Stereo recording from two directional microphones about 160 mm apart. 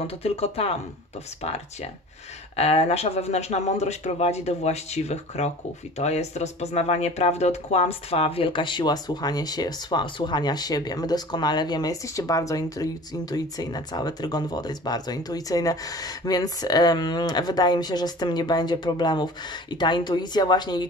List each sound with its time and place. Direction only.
0.0 s speech: 40° left (ahead or behind)
2.5 s speech: 40° left (ahead or behind)